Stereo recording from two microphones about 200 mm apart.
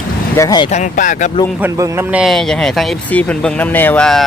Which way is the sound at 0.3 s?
20° left (ahead or behind).